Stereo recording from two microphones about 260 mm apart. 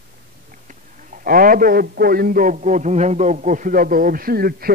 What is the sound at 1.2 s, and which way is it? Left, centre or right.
A man's voice, right.